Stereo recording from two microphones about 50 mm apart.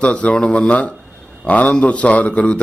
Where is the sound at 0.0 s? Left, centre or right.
Left.